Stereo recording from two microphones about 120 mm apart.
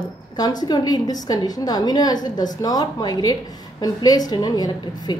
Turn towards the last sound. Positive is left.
turn(degrees=30)  # may be behind; listen again after turning